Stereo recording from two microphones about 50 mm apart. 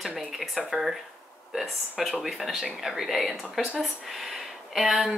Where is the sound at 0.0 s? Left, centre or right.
Centre.